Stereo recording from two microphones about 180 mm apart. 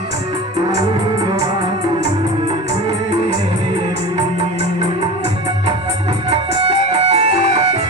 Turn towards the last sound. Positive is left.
turn(degrees=-35)  # may be behind; listen again after turning